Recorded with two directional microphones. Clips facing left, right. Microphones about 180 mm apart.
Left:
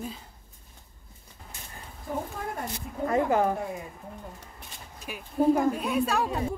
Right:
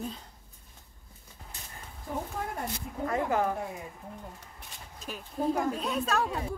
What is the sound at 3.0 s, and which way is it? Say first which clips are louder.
Speech: left 4 dB; 25° left (ahead or behind).